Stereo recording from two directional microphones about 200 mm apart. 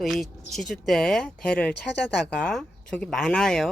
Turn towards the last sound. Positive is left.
turn(degrees=5)  # may be behind; listen again after turning